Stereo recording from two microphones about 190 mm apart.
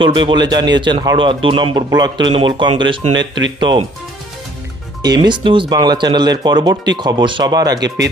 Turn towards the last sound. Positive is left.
turn(degrees=-20)  # may be behind; listen again after turning